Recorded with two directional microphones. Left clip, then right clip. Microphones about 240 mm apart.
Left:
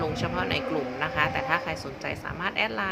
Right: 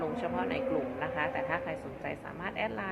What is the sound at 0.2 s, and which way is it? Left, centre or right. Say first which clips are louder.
Speech: left 4 dB; left.